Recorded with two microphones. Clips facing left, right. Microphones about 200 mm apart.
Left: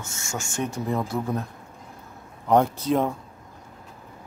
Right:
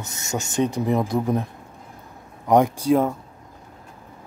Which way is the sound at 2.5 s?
15° right (ahead or behind).